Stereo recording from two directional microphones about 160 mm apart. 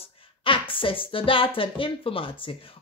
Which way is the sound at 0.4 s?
35° left (ahead or behind).